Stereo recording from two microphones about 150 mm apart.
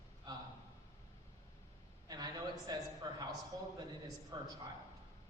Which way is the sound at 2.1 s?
25° right (ahead or behind).